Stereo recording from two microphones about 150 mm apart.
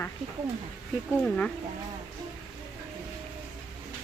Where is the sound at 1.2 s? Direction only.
5° left (ahead or behind).